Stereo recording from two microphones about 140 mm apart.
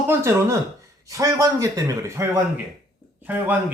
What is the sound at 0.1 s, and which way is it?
Speech, 20° right (ahead or behind).